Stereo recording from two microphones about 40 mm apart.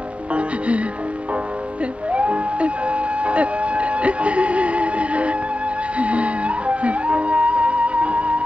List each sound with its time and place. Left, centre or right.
0.3 s music: right
2.1 s music: right